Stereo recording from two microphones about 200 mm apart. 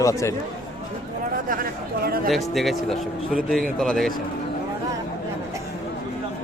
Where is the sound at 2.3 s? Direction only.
Centre (ahead or behind).